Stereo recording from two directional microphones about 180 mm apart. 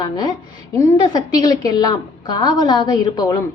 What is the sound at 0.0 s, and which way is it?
A woman's voice, 20° left (ahead or behind).